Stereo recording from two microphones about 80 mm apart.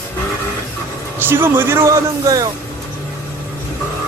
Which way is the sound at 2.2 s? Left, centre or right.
Right.